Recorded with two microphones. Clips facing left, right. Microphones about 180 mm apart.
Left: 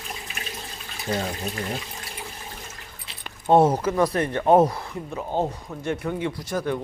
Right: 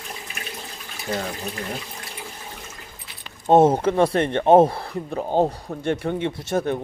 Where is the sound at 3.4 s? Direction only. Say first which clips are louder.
Right 3 dB; 20° right (ahead or behind).